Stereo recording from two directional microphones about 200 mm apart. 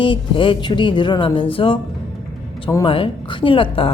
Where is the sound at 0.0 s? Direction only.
25° left (ahead or behind).